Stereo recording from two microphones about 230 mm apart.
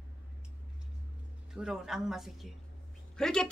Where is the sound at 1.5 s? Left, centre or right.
Centre.